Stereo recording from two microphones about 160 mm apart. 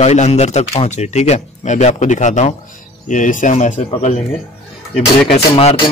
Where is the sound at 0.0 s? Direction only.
45° left (ahead or behind).